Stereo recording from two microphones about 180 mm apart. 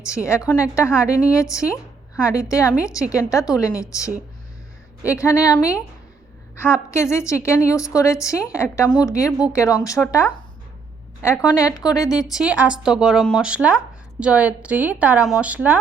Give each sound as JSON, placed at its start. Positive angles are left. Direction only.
{"t": 0.3, "sound": "a woman's voice", "side_deg": 15}
{"t": 6.9, "sound": "a woman's voice", "side_deg": 15}
{"t": 12.3, "sound": "a woman's voice", "side_deg": -5}